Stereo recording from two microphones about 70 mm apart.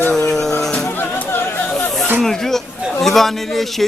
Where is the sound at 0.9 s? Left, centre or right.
Left.